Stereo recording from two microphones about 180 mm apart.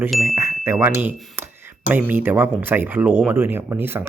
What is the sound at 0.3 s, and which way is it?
Chime, 15° right (ahead or behind).